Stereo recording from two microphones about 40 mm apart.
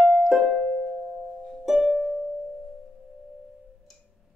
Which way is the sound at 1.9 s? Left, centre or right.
Centre.